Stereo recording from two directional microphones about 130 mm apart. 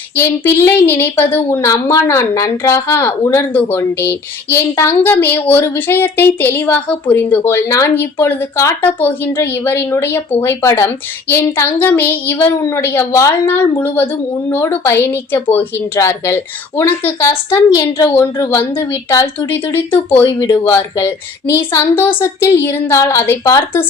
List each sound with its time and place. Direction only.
0.2 s a woman's voice: 15° left (ahead or behind)
20.2 s speech: 30° left (ahead or behind)
20.7 s a woman's voice: 20° left (ahead or behind)